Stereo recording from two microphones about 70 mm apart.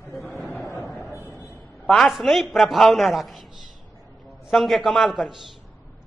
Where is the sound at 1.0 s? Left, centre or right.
Left.